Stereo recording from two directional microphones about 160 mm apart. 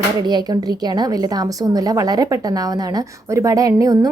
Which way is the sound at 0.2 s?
25° right (ahead or behind).